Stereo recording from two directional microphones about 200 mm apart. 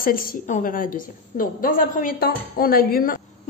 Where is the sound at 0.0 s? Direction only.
45° left (ahead or behind).